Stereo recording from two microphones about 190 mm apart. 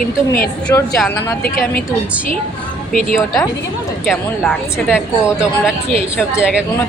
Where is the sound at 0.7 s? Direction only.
15° left (ahead or behind).